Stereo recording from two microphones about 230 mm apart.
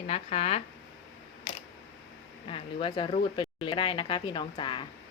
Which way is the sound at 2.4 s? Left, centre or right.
Left.